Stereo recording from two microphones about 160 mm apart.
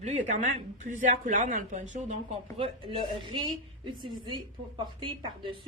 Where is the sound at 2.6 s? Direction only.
35° right (ahead or behind).